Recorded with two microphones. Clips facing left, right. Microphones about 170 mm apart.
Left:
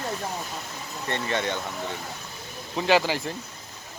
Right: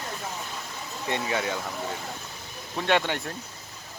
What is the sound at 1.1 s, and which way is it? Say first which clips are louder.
Speech: left 1 dB; 5° right (ahead or behind).